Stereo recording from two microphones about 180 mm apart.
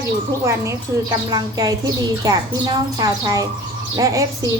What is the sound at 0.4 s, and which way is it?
A woman's voice, 15° right (ahead or behind).